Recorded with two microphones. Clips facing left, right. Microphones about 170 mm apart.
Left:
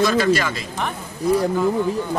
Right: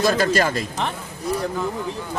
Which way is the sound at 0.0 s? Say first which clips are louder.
Left 1 dB; 45° right (ahead or behind).